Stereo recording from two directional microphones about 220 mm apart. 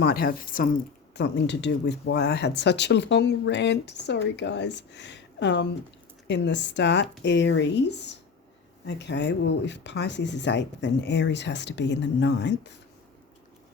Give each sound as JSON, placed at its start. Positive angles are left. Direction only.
{"t": 0.0, "sound": "speech", "side_deg": 45}
{"t": 1.1, "sound": "speech", "side_deg": 50}